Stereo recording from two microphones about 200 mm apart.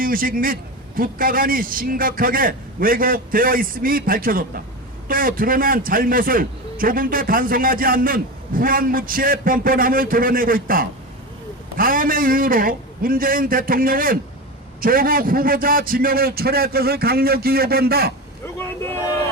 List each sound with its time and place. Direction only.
0.0 s a man's voice: 45° right (ahead or behind)
18.4 s vehicle: 10° left (ahead or behind)